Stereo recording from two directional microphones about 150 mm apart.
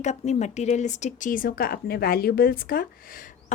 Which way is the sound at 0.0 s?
50° left (ahead or behind).